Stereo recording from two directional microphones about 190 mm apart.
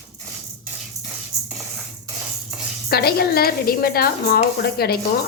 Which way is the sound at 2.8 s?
55° left (ahead or behind).